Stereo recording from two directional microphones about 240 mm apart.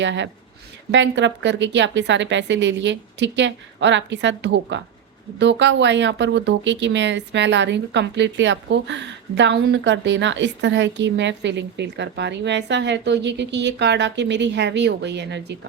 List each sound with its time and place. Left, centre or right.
0.0 s speech: right